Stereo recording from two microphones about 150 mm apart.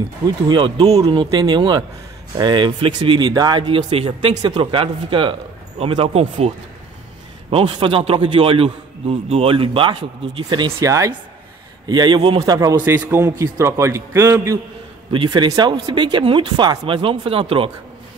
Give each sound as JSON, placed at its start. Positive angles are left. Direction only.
{"t": 0.5, "sound": "a man's voice", "side_deg": -35}
{"t": 7.5, "sound": "a man's voice", "side_deg": -35}
{"t": 10.8, "sound": "a man's voice", "side_deg": -20}